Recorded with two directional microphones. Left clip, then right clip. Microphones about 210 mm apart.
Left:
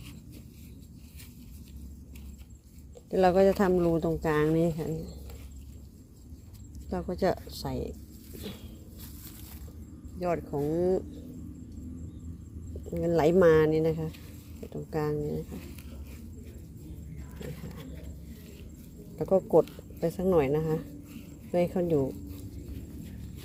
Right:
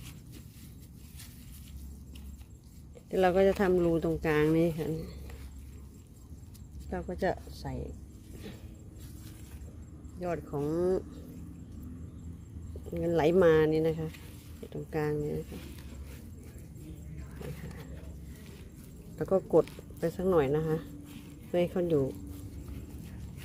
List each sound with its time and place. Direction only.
3.1 s speech: 5° left (ahead or behind)
6.9 s speech: 15° left (ahead or behind)
10.2 s speech: 10° left (ahead or behind)
12.9 s speech: 5° left (ahead or behind)
19.2 s speech: 5° right (ahead or behind)